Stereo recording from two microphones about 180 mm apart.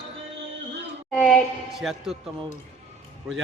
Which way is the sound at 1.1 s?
5° left (ahead or behind).